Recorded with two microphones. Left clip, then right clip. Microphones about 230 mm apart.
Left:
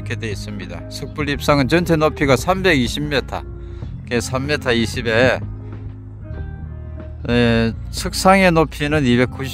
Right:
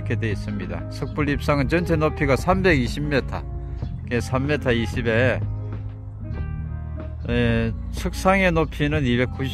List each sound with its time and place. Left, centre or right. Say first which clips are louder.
0.1 s speech: left 1 dB; left
7.2 s speech: left 6 dB; left